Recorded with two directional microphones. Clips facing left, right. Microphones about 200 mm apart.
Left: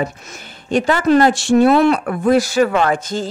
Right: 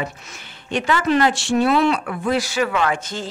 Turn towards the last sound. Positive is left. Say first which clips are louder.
# left 5 dB
turn(degrees=40)  # may be behind; listen again after turning